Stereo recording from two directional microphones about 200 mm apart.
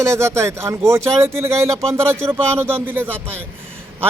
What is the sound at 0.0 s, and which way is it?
Speech, 15° right (ahead or behind).